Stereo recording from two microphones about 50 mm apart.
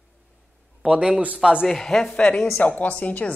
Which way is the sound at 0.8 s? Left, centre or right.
Centre.